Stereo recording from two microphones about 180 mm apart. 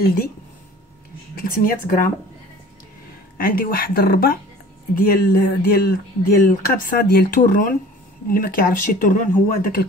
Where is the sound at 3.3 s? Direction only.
50° left (ahead or behind).